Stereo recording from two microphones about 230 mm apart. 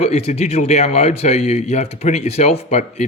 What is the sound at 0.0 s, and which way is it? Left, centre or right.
Speech, left.